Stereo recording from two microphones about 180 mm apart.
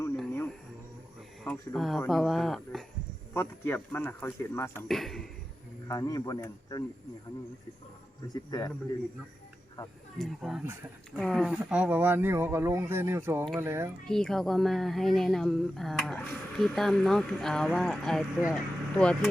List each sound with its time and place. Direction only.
1.5 s speech: centre (ahead or behind)
3.3 s speech: 10° left (ahead or behind)
4.9 s speech: centre (ahead or behind)
5.9 s a man's voice: 20° left (ahead or behind)
8.3 s a man's voice: 20° left (ahead or behind)
10.2 s speech: centre (ahead or behind)
14.0 s speech: 5° left (ahead or behind)